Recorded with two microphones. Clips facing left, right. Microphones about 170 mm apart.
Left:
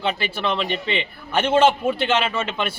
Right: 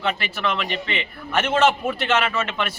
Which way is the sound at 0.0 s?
30° left (ahead or behind).